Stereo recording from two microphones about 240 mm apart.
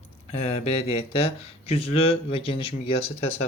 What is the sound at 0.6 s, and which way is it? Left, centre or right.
Speech, left.